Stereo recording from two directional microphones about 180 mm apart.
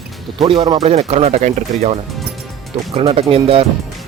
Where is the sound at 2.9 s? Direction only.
30° right (ahead or behind).